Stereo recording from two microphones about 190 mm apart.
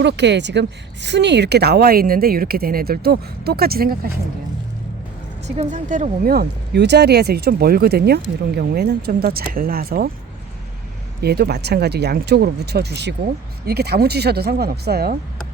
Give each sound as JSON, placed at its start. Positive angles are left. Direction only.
{"t": 0.0, "sound": "speech", "side_deg": -65}
{"t": 5.5, "sound": "speech", "side_deg": -40}
{"t": 11.2, "sound": "speech", "side_deg": -55}